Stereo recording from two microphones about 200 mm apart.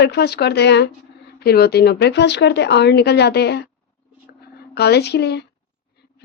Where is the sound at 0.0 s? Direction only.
55° left (ahead or behind).